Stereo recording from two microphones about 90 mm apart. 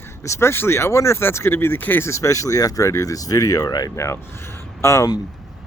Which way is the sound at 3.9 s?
35° left (ahead or behind).